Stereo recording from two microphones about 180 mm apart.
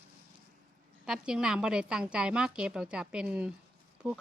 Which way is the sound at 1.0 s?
5° right (ahead or behind).